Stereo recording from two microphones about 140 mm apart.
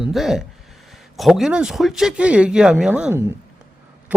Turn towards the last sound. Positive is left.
turn(degrees=-15)  # may be behind; listen again after turning